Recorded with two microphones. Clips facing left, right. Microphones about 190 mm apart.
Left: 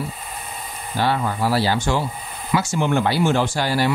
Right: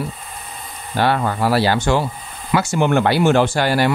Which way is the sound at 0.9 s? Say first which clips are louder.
Right 3 dB; 60° right (ahead or behind).